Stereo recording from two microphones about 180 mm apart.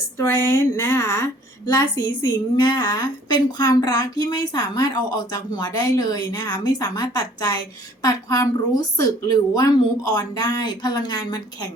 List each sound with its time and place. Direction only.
0.2 s a woman's voice: 15° left (ahead or behind)